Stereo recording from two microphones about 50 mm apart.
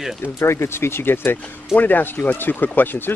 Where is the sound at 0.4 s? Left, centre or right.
Left.